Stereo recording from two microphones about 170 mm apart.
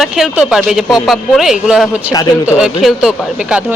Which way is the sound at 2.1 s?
20° left (ahead or behind).